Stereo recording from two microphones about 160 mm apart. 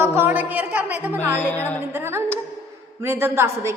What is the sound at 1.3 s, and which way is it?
Speech, 10° left (ahead or behind).